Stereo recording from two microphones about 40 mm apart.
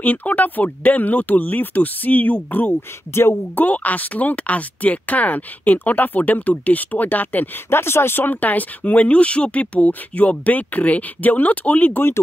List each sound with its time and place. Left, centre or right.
0.0 s speech: left
3.2 s speech: left
3.5 s speech: left
7.7 s speech: left